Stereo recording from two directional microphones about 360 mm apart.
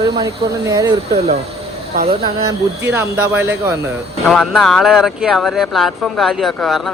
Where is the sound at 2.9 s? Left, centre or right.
Centre.